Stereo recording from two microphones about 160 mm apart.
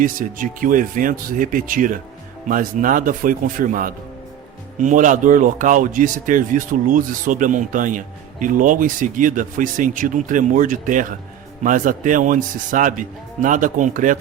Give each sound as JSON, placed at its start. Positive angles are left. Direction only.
{"t": 0.0, "sound": "speech", "side_deg": -60}